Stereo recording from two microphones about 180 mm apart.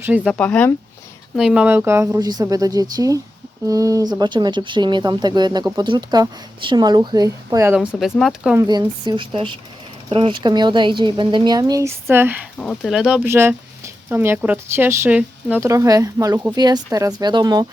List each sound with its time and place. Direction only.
0.0 s speech: 10° right (ahead or behind)
0.3 s speech: 10° left (ahead or behind)
1.4 s speech: 5° right (ahead or behind)
7.8 s speech: centre (ahead or behind)
8.5 s speech: 25° right (ahead or behind)
12.5 s speech: centre (ahead or behind); by 17.7 s 20° right (ahead or behind)